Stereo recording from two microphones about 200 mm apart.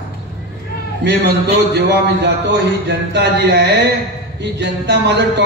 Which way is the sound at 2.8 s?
60° right (ahead or behind).